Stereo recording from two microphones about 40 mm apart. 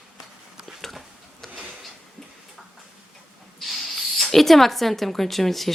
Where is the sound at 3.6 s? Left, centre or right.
Centre.